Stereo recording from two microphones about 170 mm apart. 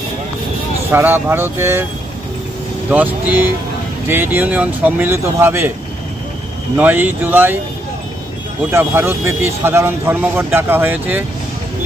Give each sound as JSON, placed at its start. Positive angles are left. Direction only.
{"t": 0.9, "sound": "speech", "side_deg": -15}
{"t": 2.9, "sound": "speech", "side_deg": -10}
{"t": 6.7, "sound": "speech", "side_deg": -10}
{"t": 8.7, "sound": "speech", "side_deg": -15}